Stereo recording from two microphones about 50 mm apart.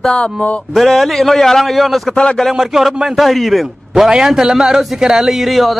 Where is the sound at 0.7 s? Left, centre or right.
Centre.